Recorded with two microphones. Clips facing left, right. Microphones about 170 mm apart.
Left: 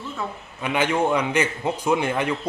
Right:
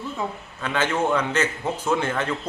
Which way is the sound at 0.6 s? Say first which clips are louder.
Left 2 dB; 15° left (ahead or behind).